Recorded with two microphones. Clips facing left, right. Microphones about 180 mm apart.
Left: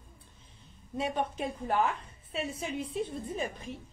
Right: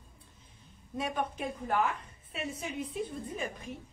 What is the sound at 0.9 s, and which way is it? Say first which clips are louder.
Speech: left 2 dB; 25° left (ahead or behind).